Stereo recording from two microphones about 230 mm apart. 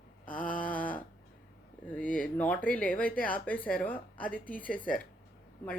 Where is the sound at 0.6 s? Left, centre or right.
Centre.